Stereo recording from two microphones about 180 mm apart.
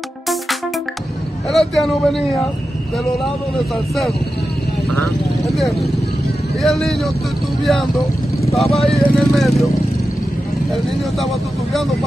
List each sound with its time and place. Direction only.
1.5 s speech: centre (ahead or behind)
5.4 s speech: centre (ahead or behind)
8.6 s speech: 35° left (ahead or behind)
8.9 s speech: centre (ahead or behind)